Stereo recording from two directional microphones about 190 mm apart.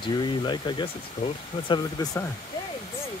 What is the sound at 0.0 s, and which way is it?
Speech, 25° left (ahead or behind).